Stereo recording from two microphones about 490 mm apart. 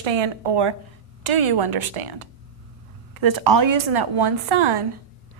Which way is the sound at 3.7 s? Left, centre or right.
Right.